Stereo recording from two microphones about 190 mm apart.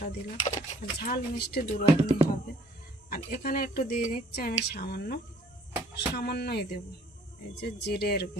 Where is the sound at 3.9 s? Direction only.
40° left (ahead or behind).